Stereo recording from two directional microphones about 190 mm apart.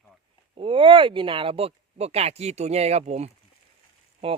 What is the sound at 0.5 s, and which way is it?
Speech, 25° right (ahead or behind).